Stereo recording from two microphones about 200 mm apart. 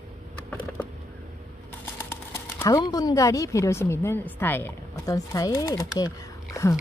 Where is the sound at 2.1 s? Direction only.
15° left (ahead or behind).